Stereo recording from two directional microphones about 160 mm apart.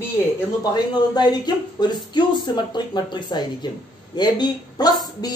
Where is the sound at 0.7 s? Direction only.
25° left (ahead or behind).